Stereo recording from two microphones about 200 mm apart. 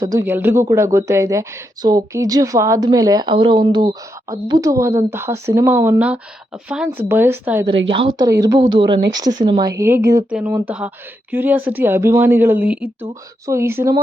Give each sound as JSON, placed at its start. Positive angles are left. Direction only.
{"t": 0.0, "sound": "a woman's voice", "side_deg": -15}
{"t": 7.9, "sound": "a woman's voice", "side_deg": -25}